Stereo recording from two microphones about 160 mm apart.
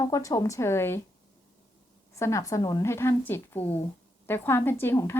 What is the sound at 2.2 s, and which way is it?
Speech, 20° left (ahead or behind).